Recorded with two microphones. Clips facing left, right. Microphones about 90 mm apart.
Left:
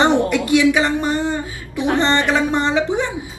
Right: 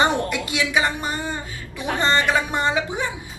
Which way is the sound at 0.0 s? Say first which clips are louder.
Left 5 dB; 20° left (ahead or behind).